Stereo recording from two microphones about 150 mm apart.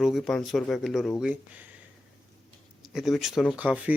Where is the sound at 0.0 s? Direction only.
Centre (ahead or behind).